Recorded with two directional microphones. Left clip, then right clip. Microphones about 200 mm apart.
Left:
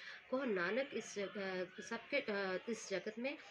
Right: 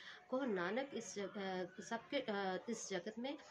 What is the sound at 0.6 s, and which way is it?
A woman's voice, 25° right (ahead or behind).